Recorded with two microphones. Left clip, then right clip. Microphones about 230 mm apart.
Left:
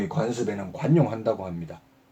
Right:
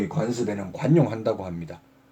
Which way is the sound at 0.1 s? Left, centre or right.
Centre.